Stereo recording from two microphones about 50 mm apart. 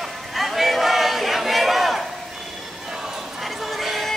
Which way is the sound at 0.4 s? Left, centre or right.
Centre.